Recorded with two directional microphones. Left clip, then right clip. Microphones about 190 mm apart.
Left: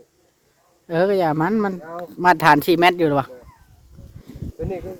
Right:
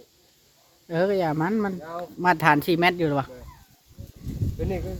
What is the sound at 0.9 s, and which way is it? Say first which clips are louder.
Speech: left 5 dB; 65° left (ahead or behind).